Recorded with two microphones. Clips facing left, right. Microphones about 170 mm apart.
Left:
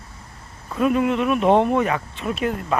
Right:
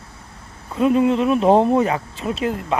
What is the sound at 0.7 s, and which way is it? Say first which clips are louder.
Speech: right 3 dB; 25° right (ahead or behind).